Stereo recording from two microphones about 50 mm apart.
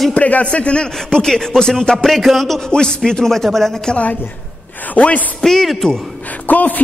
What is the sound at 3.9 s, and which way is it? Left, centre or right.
A woman's voice, left.